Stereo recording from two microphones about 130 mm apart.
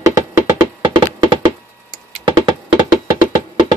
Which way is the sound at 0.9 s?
35° right (ahead or behind).